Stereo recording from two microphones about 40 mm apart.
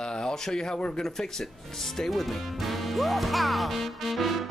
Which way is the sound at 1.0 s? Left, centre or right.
Centre.